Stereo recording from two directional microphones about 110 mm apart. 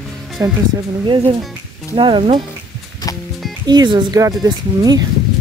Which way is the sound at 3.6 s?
40° right (ahead or behind).